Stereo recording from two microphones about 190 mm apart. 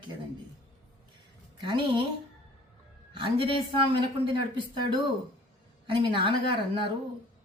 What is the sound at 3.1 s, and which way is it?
Speech, 30° right (ahead or behind).